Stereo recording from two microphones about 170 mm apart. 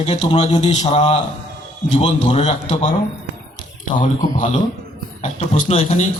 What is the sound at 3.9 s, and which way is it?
Speech, 45° left (ahead or behind).